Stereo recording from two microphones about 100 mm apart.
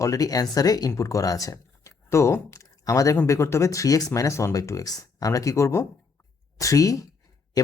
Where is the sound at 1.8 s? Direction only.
25° left (ahead or behind).